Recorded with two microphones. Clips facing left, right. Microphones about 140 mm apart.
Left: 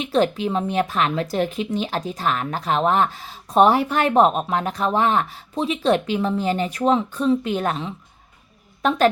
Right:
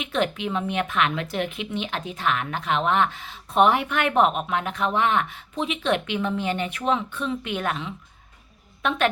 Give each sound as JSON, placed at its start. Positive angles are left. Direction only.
{"t": 0.0, "sound": "a woman's voice", "side_deg": 35}